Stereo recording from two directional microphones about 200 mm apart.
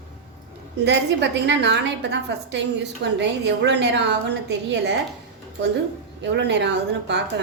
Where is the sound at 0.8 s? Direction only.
60° right (ahead or behind).